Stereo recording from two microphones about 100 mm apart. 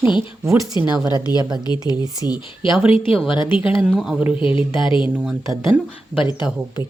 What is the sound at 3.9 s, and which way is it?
Speech, 10° right (ahead or behind).